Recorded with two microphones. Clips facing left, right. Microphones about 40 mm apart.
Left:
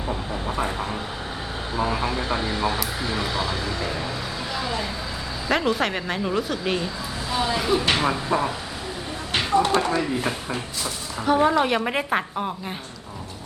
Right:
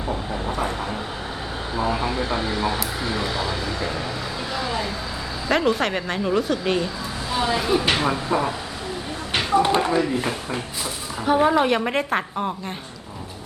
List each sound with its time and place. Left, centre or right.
0.5 s vehicle: centre
1.7 s speech: centre
4.5 s vehicle: centre
5.5 s speech: centre
9.3 s a sound: centre
9.6 s speech: centre
11.3 s speech: centre